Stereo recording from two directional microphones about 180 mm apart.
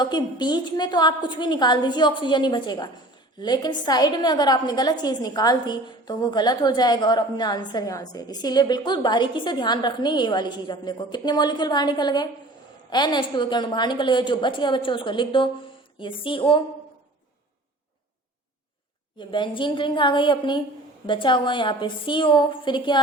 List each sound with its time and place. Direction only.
0.0 s a woman's voice: 25° left (ahead or behind)
19.3 s a woman's voice: 25° left (ahead or behind)